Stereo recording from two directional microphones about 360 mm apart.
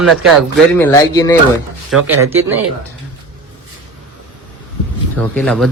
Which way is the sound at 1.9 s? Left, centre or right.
Centre.